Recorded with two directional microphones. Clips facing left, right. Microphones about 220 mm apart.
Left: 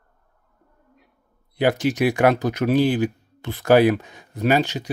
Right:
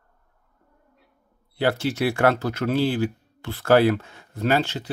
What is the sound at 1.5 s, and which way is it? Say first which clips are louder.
Speech: left 3 dB; 15° left (ahead or behind).